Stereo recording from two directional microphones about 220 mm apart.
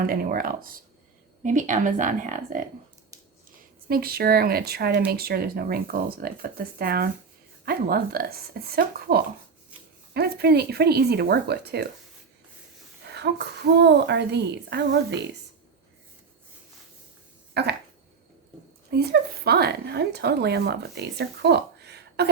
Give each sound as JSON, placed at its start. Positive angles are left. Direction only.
{"t": 0.0, "sound": "a woman's voice", "side_deg": -40}
{"t": 3.8, "sound": "a woman's voice", "side_deg": -45}
{"t": 13.1, "sound": "a woman's voice", "side_deg": -50}
{"t": 17.5, "sound": "a sound", "side_deg": -50}
{"t": 18.9, "sound": "a woman's voice", "side_deg": -45}